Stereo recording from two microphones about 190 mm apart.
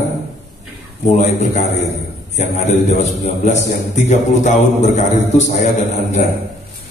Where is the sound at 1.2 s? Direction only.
35° left (ahead or behind).